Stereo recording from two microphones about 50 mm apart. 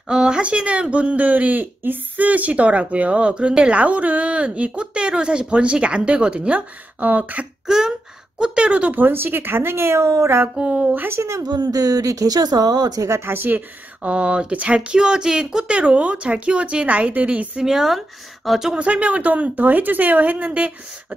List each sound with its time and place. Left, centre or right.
0.1 s speech: centre; by 7.4 s right
7.6 s a sound: centre
8.4 s speech: centre
8.9 s speech: right
10.5 s speech: right
10.8 s speech: right
11.1 s speech: right
12.2 s speech: right
13.2 s speech: right
14.1 s speech: right
17.6 s speech: centre
18.8 s speech: right